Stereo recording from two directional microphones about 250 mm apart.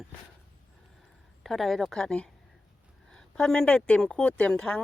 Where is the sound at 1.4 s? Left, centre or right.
Centre.